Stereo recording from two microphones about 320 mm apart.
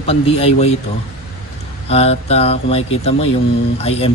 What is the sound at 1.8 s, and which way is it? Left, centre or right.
A man's voice, centre.